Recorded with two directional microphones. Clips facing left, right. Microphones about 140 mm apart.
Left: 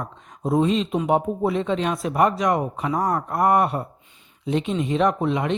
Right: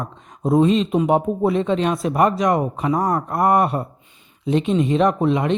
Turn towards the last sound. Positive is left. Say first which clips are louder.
# right 3 dB
turn(degrees=-35)  # may be behind; listen again after turning